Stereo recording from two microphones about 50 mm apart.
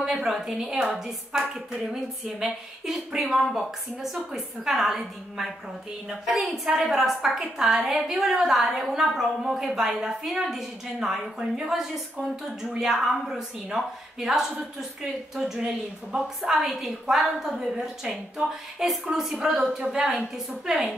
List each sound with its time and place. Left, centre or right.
0.0 s a woman's voice: centre
2.4 s a woman's voice: centre
12.7 s a woman's voice: centre